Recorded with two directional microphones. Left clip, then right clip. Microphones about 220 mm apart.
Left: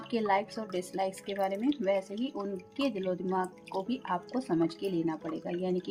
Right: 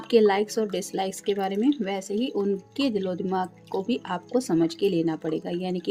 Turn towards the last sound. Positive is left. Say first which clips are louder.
# right 3 dB
turn(degrees=-40)  # may be behind; listen again after turning